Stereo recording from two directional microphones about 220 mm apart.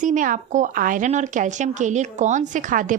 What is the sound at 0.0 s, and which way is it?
A woman's voice, 35° right (ahead or behind).